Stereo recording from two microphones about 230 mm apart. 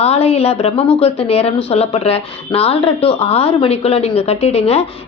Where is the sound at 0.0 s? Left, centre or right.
Left.